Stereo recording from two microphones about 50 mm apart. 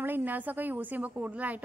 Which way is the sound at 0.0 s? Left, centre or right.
Right.